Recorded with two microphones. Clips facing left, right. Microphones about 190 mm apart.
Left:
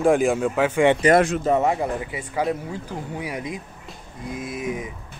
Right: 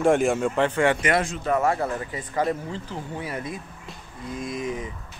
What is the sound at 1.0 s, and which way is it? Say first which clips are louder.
Speech: left 7 dB; 35° left (ahead or behind).